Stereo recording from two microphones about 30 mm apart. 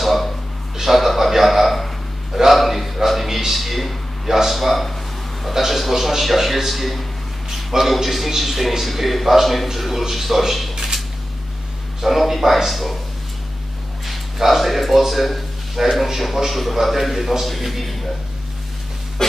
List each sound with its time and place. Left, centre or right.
0.0 s a sound: centre
4.3 s a man's voice: centre
12.0 s a man's voice: centre
14.0 s a man's voice: centre